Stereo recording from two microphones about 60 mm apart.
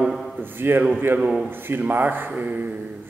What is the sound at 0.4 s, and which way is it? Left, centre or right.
A man's voice, right.